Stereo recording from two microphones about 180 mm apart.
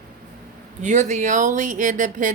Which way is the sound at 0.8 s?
40° right (ahead or behind).